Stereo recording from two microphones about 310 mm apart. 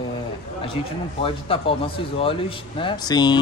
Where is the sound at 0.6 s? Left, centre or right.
Centre.